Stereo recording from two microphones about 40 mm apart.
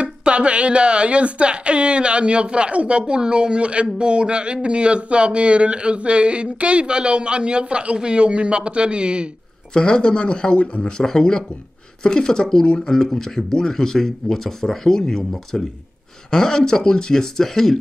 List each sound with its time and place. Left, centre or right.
0.0 s speech: right
9.8 s speech: left
10.9 s speech: centre